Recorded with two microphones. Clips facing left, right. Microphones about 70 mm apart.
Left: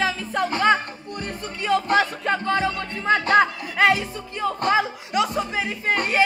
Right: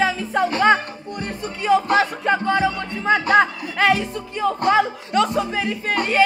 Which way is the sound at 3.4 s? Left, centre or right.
Centre.